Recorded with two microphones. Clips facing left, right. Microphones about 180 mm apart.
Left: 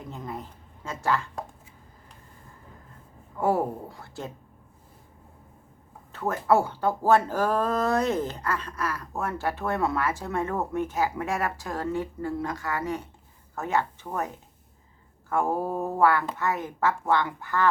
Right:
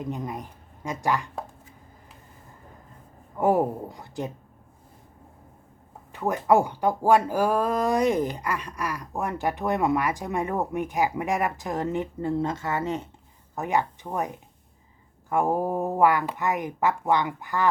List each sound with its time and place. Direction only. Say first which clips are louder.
0.0 s speech: right 5 dB; 15° right (ahead or behind)
3.3 s speech: right 3 dB; 20° right (ahead or behind)
6.1 s speech: right 2 dB; 15° right (ahead or behind)
15.3 s speech: right 2 dB; 15° right (ahead or behind)